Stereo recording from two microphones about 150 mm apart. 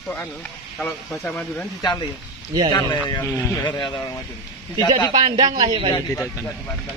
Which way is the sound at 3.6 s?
30° left (ahead or behind).